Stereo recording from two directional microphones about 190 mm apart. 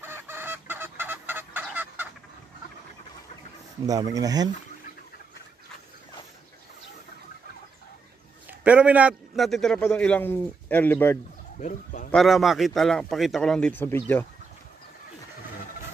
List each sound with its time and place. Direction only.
0.0 s fowl: 10° right (ahead or behind)
3.8 s speech: 20° right (ahead or behind)
8.5 s a man's voice: 5° right (ahead or behind); by 11.1 s 10° left (ahead or behind)
11.6 s speech: 45° left (ahead or behind)
12.1 s a man's voice: centre (ahead or behind)